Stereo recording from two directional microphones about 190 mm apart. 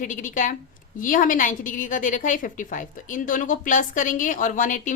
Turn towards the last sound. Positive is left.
turn(degrees=45)  # may be behind; listen again after turning